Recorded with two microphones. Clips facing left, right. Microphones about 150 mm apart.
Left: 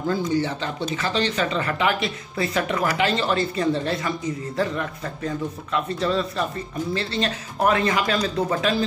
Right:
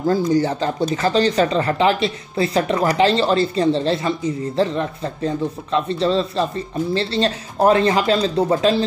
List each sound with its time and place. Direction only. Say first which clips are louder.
0.0 s speech: right 6 dB; 40° right (ahead or behind)